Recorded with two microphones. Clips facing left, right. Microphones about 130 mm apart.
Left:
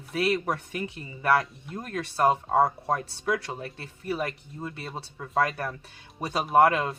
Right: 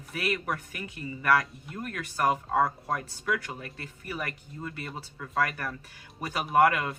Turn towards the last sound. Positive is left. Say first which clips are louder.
# left 2 dB
turn(degrees=30)  # may be behind; listen again after turning